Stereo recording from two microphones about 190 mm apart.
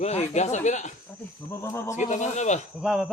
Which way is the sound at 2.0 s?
40° left (ahead or behind).